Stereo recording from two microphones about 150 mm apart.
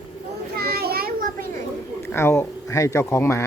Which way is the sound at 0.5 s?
90° right.